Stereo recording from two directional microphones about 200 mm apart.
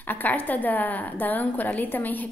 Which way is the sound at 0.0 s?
10° left (ahead or behind).